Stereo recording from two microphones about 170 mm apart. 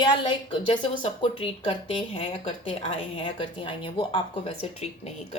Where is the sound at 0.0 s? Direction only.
25° left (ahead or behind).